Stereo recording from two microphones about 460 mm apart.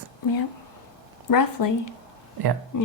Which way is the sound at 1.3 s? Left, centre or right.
Left.